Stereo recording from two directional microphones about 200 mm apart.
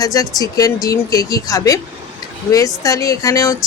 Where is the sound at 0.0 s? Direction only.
20° left (ahead or behind).